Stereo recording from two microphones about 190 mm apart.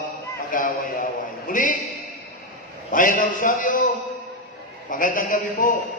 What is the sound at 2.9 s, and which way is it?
Mantra, 45° left (ahead or behind).